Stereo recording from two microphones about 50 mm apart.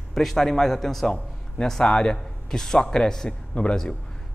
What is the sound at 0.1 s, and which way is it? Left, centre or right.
A man's voice, centre.